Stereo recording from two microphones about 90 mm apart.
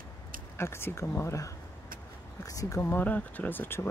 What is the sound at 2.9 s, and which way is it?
Speech, 20° left (ahead or behind).